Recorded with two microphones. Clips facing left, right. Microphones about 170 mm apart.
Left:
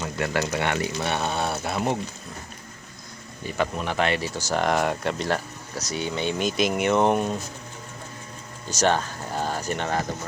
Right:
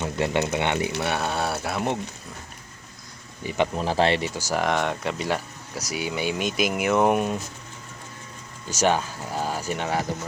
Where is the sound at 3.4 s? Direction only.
20° right (ahead or behind).